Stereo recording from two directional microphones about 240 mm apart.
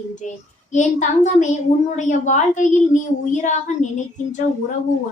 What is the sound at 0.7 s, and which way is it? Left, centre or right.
A woman's voice, left.